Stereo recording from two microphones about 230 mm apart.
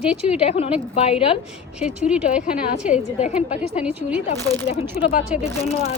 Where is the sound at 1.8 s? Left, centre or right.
Centre.